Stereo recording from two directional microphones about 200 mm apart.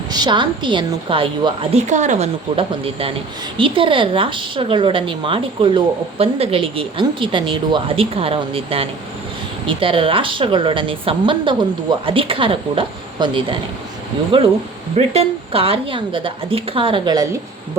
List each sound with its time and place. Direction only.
0.1 s speech: 20° right (ahead or behind)